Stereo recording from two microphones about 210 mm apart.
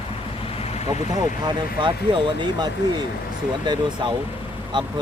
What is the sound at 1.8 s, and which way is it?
Speech, 20° right (ahead or behind).